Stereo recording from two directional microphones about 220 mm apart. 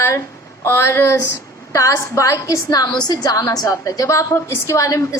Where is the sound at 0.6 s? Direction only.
10° left (ahead or behind).